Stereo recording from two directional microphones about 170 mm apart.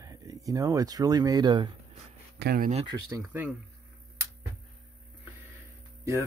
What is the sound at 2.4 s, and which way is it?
Speech, 70° right (ahead or behind).